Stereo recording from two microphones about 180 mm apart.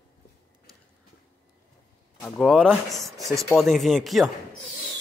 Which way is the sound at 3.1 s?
15° right (ahead or behind).